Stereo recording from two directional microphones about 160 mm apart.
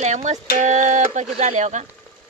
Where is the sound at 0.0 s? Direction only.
45° right (ahead or behind).